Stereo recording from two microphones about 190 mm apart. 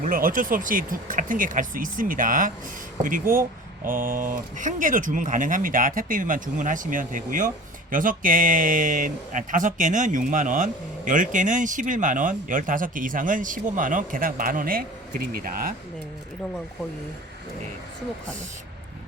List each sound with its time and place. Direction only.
0.0 s speech: 50° right (ahead or behind)